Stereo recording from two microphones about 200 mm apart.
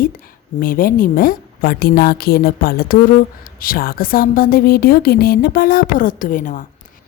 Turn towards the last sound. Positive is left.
turn(degrees=40)  # may be behind; listen again after turning